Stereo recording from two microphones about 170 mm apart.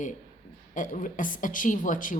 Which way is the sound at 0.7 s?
50° left (ahead or behind).